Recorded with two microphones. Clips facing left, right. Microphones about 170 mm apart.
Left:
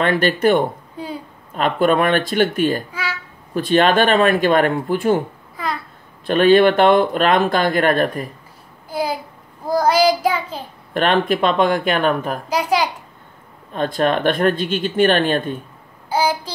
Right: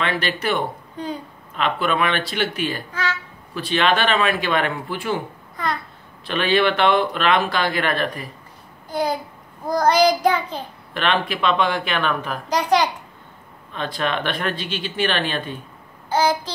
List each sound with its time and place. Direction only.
0.0 s speech: 45° left (ahead or behind)
0.9 s a sound: 5° left (ahead or behind)
1.5 s speech: 45° left (ahead or behind)
2.9 s a sound: 10° left (ahead or behind)
3.5 s speech: 45° left (ahead or behind)
5.6 s babbling: 5° left (ahead or behind)
6.2 s speech: 45° left (ahead or behind)
8.9 s a sound: 5° left (ahead or behind)
9.7 s child singing: 5° left (ahead or behind)
10.9 s speech: 45° left (ahead or behind)
12.4 s a child's voice: 5° left (ahead or behind)
13.7 s speech: 45° left (ahead or behind)
16.1 s child singing: 10° left (ahead or behind)